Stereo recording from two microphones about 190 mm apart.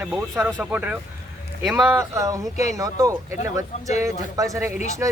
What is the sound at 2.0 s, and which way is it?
Speech, 15° right (ahead or behind).